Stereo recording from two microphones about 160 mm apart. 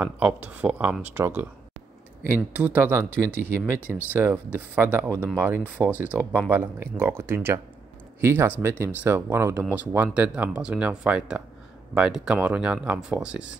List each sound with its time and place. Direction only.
0.0 s speech: 10° right (ahead or behind)